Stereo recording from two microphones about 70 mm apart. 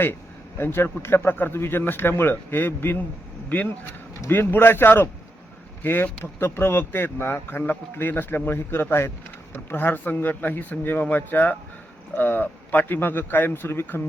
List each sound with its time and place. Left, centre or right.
0.0 s a man's voice: left
4.3 s a man's voice: left